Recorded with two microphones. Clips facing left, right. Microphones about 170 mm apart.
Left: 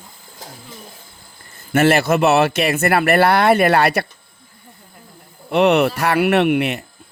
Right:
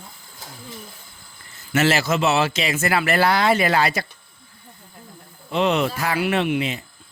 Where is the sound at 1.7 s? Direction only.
55° left (ahead or behind).